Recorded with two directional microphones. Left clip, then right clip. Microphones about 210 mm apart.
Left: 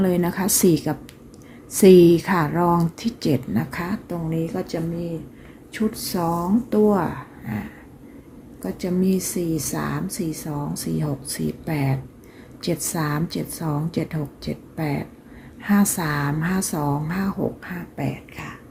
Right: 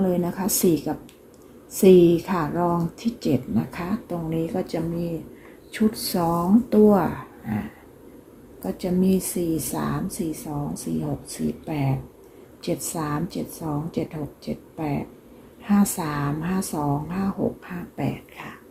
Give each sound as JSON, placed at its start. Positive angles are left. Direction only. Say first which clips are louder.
{"t": 0.0, "sound": "a woman's voice", "louder": "left 2 dB", "side_deg": 30}
{"t": 4.3, "sound": "speech", "louder": "even", "side_deg": 5}
{"t": 8.6, "sound": "a woman's voice", "louder": "even", "side_deg": 10}
{"t": 18.0, "sound": "speech", "louder": "even", "side_deg": 0}